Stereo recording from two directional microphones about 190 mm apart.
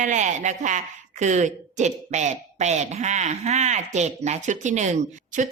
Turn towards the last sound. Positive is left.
turn(degrees=-40)  # may be behind; listen again after turning